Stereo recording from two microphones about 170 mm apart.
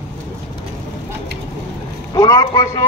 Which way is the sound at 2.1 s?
20° left (ahead or behind).